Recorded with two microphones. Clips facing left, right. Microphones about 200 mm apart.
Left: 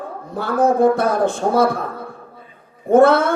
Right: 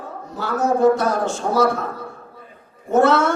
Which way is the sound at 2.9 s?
55° left (ahead or behind).